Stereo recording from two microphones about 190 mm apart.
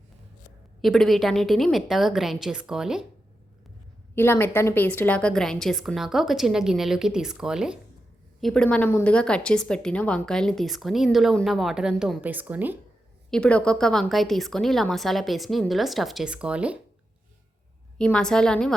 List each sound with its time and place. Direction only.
0.8 s a woman's voice: centre (ahead or behind)
4.1 s a woman's voice: 10° left (ahead or behind); by 12.8 s 10° right (ahead or behind)
13.3 s a woman's voice: 5° left (ahead or behind)
17.9 s a woman's voice: 5° left (ahead or behind)